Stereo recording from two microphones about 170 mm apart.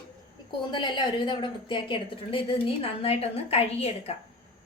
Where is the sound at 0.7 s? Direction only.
30° left (ahead or behind).